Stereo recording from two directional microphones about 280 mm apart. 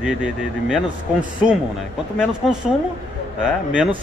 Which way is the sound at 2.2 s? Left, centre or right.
Centre.